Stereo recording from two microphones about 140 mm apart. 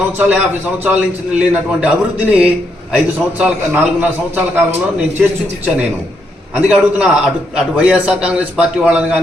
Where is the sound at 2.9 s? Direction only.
10° right (ahead or behind).